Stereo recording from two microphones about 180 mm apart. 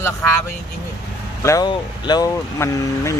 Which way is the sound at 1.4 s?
20° left (ahead or behind).